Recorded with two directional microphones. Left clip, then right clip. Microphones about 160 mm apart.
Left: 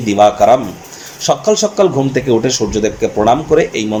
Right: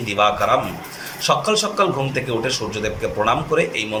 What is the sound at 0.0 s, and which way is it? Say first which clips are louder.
Speech: left 9 dB; 45° left (ahead or behind).